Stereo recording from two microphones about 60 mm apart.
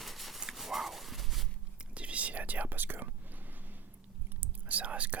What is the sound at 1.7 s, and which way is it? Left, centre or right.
Whispering, right.